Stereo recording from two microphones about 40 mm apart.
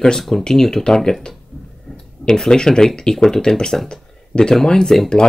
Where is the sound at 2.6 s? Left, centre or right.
Centre.